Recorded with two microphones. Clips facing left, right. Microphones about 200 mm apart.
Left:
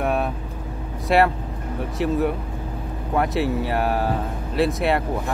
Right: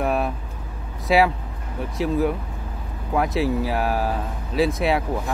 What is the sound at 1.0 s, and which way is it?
Speech, centre (ahead or behind).